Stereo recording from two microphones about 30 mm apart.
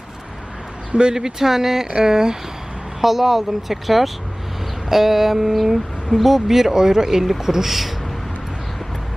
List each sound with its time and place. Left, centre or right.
1.1 s speech: centre
3.0 s speech: centre